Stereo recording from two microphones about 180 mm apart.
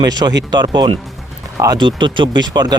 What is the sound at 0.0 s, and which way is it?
Speech, 25° right (ahead or behind).